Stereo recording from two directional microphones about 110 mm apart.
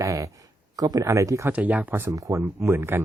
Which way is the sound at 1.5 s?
15° right (ahead or behind).